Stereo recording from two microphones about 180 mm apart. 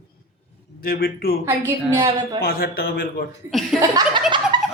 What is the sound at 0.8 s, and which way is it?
Speech, 55° left (ahead or behind).